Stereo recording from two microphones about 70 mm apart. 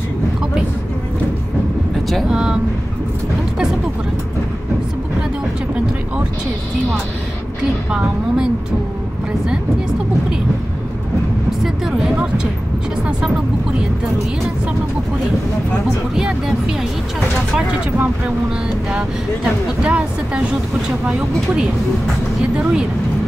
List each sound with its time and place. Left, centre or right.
2.2 s vehicle: centre
7.9 s speech: centre
16.2 s speech: centre
18.9 s speech: centre
22.4 s speech: centre